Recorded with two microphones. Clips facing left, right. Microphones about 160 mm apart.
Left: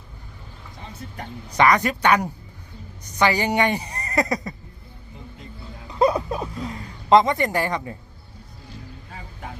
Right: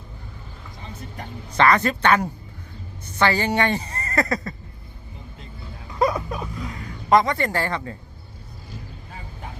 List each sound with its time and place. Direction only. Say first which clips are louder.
1.5 s speech: even; 15° left (ahead or behind)
6.0 s speech: left 3 dB; 25° left (ahead or behind)